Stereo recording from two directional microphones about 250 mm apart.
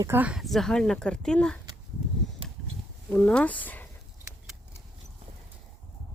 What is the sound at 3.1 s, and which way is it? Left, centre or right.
Speech, centre.